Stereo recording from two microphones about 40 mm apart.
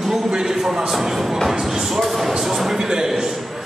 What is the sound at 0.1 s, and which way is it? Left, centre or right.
A man's voice, centre.